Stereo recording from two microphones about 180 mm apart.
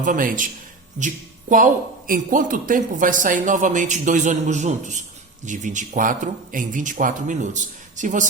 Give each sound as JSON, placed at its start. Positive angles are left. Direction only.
{"t": 0.0, "sound": "speech", "side_deg": -50}